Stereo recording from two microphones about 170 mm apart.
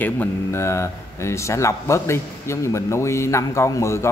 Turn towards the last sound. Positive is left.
turn(degrees=15)  # may be behind; listen again after turning